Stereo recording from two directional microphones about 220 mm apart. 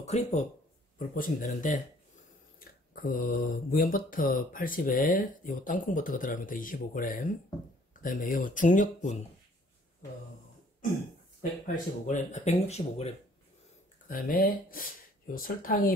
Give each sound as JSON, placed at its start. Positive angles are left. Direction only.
{"t": 0.0, "sound": "speech", "side_deg": 30}
{"t": 11.6, "sound": "speech", "side_deg": 35}
{"t": 14.0, "sound": "speech", "side_deg": 40}